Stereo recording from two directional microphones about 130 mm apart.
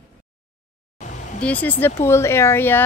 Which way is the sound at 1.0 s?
65° left (ahead or behind).